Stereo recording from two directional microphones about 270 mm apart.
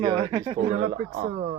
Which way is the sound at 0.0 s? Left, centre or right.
Centre.